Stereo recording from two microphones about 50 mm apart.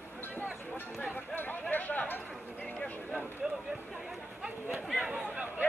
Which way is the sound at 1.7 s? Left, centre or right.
Left.